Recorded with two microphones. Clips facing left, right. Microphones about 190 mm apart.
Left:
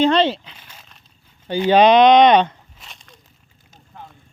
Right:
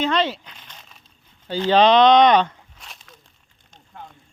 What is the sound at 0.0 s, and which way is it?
Speech, 30° left (ahead or behind).